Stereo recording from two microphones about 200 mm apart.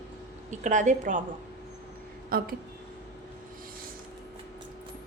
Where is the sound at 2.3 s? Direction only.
50° right (ahead or behind).